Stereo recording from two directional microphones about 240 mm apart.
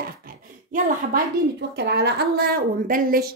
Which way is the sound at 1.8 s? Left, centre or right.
Right.